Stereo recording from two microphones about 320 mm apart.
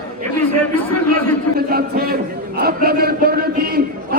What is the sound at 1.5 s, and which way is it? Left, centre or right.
A man's voice, right.